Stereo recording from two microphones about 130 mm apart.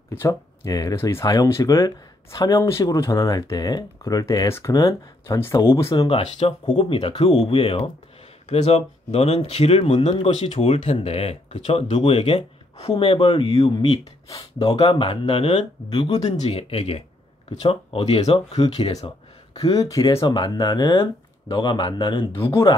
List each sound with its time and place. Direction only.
0.1 s speech: 25° left (ahead or behind)
6.0 s speech: 45° left (ahead or behind)
19.6 s speech: 25° left (ahead or behind)